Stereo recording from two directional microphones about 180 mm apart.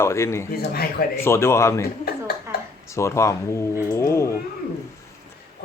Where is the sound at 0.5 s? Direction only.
60° left (ahead or behind).